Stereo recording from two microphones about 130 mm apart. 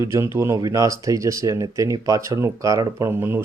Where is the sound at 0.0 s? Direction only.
20° right (ahead or behind).